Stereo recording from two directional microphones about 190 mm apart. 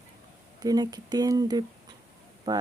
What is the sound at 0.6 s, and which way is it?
Speech, 20° right (ahead or behind).